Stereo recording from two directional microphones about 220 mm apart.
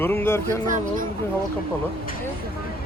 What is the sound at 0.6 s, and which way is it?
Speech, 35° right (ahead or behind).